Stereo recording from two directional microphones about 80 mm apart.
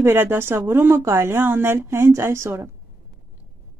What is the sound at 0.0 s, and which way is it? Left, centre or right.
Speech, right.